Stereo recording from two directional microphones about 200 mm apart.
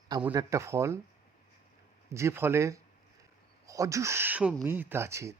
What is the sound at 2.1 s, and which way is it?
Speech, 15° right (ahead or behind).